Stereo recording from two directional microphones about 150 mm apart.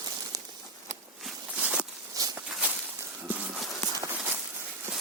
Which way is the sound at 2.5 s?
5° right (ahead or behind).